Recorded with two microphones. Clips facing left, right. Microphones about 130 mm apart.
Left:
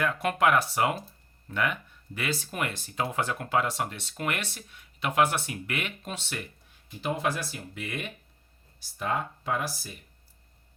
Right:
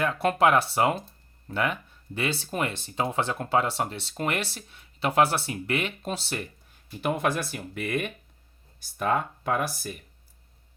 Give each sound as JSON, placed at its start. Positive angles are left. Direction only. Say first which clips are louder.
{"t": 0.0, "sound": "speech", "louder": "right 3 dB", "side_deg": -30}
{"t": 7.0, "sound": "speech", "louder": "right 3 dB", "side_deg": -55}